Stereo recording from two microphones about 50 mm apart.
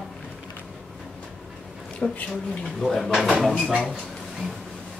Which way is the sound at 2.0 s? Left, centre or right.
Left.